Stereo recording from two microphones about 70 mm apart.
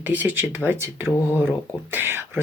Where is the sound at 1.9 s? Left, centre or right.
Right.